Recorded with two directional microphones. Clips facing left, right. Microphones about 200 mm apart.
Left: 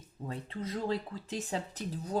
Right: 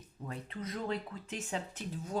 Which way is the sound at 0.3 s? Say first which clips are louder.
Left 3 dB; 30° left (ahead or behind).